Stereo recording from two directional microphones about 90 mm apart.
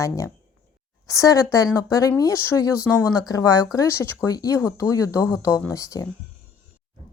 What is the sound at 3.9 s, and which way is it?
Speech, 30° left (ahead or behind).